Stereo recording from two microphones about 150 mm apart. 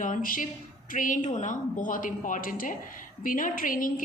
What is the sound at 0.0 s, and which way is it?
A woman's voice, 65° left (ahead or behind).